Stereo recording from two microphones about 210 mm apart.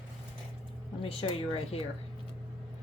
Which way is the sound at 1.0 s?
30° left (ahead or behind).